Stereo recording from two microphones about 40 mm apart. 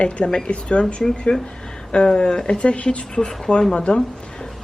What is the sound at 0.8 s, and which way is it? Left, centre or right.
Speech, centre.